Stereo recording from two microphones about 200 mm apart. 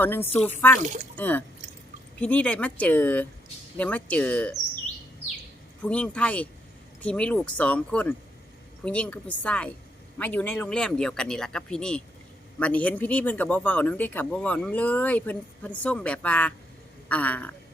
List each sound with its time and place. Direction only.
0.0 s speech: 10° left (ahead or behind)
0.8 s speech: 40° right (ahead or behind)
1.1 s speech: 10° left (ahead or behind)
5.8 s speech: 5° left (ahead or behind)